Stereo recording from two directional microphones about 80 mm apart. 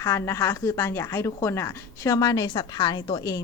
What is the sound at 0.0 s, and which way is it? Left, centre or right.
Speech, left.